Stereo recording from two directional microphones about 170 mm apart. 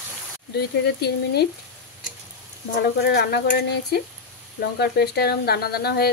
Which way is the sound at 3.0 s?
75° left (ahead or behind).